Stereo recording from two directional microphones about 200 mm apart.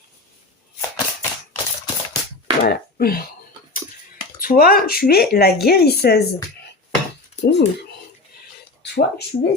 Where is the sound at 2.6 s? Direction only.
50° left (ahead or behind).